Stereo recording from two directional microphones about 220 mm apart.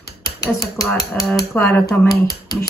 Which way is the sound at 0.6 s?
15° left (ahead or behind).